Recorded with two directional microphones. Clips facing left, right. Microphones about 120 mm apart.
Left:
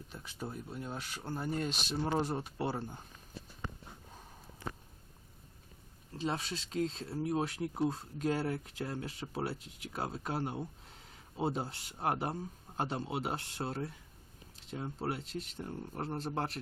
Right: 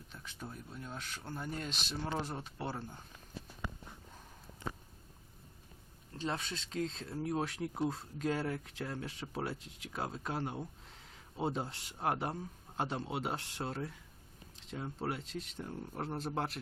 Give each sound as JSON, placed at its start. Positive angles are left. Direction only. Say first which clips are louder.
{"t": 0.1, "sound": "a sound", "louder": "left 2 dB", "side_deg": 10}
{"t": 0.7, "sound": "speech", "louder": "left 4 dB", "side_deg": 15}
{"t": 1.3, "sound": "speech", "louder": "left 6 dB", "side_deg": 35}
{"t": 2.0, "sound": "speech", "louder": "left 6 dB", "side_deg": 15}
{"t": 4.6, "sound": "a sound", "louder": "even", "side_deg": -20}
{"t": 6.1, "sound": "speech", "louder": "left 2 dB", "side_deg": 5}